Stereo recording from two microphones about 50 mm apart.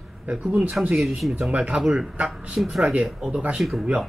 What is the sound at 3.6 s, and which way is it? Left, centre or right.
Speech, right.